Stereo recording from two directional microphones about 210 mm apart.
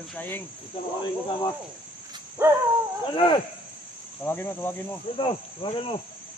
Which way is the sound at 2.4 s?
10° right (ahead or behind).